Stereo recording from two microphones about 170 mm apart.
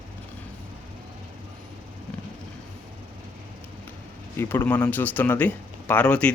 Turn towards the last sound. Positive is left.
turn(degrees=5)  # may be behind; listen again after turning